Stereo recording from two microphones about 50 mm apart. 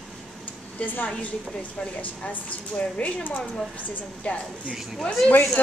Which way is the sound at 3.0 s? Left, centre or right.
Left.